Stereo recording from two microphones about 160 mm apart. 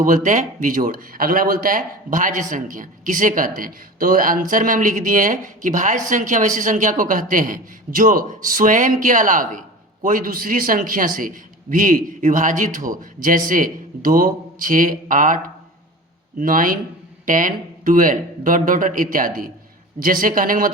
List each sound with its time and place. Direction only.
0.0 s a man's voice: 55° right (ahead or behind)
16.4 s a man's voice: 60° right (ahead or behind)